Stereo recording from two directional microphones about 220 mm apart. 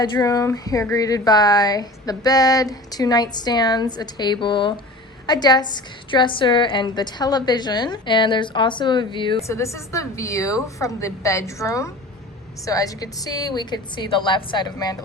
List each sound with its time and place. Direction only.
0.0 s a woman's voice: 15° left (ahead or behind)